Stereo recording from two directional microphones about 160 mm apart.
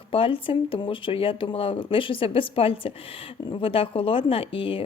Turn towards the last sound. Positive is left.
turn(degrees=35)  # may be behind; listen again after turning